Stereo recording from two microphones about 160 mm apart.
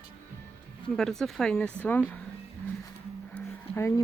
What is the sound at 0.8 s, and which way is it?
Speech, 5° left (ahead or behind).